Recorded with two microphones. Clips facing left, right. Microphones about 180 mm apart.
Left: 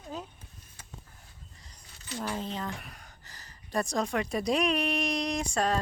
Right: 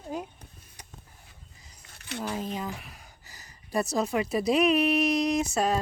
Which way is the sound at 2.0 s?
65° right (ahead or behind).